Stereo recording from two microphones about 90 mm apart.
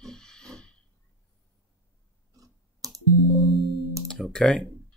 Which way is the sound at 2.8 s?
40° right (ahead or behind).